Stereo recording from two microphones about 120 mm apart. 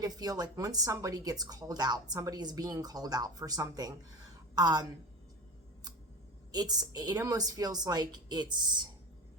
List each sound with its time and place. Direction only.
0.0 s speech: 35° right (ahead or behind)
6.5 s speech: 35° right (ahead or behind)